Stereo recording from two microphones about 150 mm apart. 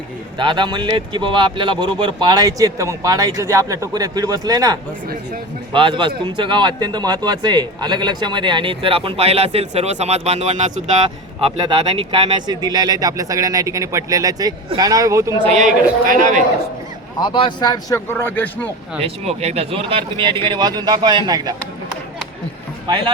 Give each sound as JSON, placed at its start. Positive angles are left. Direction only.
{"t": 0.3, "sound": "speech", "side_deg": -30}
{"t": 11.8, "sound": "speech", "side_deg": -35}
{"t": 15.4, "sound": "a man's voice", "side_deg": -50}
{"t": 17.2, "sound": "speech", "side_deg": 35}
{"t": 17.9, "sound": "a man's voice", "side_deg": 15}
{"t": 18.9, "sound": "speech", "side_deg": -40}